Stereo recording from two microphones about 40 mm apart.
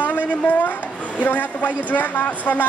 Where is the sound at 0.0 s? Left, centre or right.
Left.